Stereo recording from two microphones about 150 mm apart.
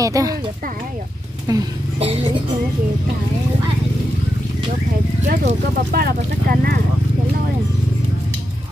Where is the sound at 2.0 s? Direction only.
40° right (ahead or behind).